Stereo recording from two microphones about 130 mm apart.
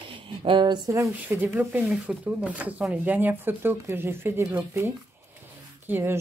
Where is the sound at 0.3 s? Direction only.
40° right (ahead or behind); by 4.6 s 20° right (ahead or behind).